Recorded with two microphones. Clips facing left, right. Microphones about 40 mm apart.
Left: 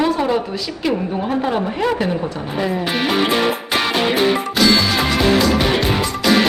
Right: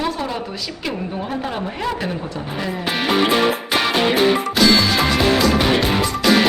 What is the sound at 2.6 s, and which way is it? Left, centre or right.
Music, centre.